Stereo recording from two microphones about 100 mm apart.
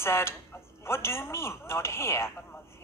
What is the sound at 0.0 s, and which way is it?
A man's voice, 25° left (ahead or behind).